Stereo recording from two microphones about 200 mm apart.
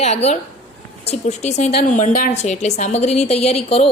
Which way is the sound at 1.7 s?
45° left (ahead or behind).